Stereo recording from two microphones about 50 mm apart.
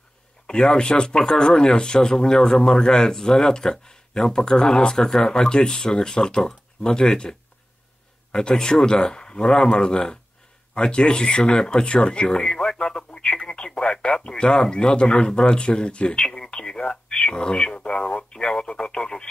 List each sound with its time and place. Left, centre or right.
0.5 s speech: centre